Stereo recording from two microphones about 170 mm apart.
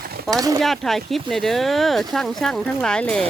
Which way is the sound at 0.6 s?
Centre (ahead or behind).